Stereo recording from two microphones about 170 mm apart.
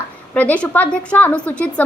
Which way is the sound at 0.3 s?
10° left (ahead or behind).